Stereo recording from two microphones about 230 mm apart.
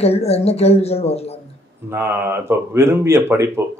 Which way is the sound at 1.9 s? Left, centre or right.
Centre.